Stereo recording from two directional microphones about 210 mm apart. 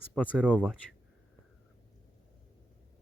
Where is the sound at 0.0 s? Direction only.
10° left (ahead or behind).